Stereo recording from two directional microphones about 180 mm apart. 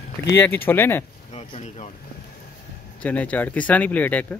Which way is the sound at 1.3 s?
35° left (ahead or behind).